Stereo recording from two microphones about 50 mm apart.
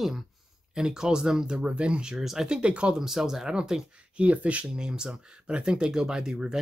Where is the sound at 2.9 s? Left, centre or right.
Centre.